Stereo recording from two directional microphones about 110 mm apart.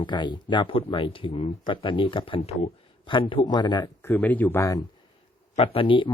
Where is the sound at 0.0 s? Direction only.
45° left (ahead or behind); by 2.6 s 60° left (ahead or behind).